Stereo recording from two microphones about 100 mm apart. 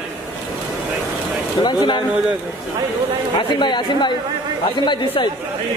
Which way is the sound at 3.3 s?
50° left (ahead or behind).